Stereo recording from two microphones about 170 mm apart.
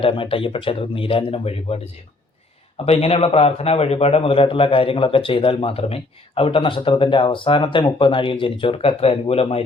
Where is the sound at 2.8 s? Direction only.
35° left (ahead or behind).